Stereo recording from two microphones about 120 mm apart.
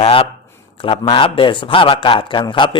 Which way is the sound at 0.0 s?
50° left (ahead or behind).